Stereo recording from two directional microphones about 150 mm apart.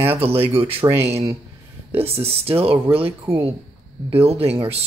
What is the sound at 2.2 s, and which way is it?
Speech, 40° right (ahead or behind).